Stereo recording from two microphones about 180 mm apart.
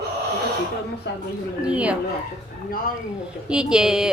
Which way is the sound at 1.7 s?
5° right (ahead or behind).